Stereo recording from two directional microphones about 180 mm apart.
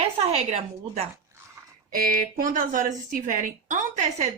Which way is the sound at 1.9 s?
50° right (ahead or behind).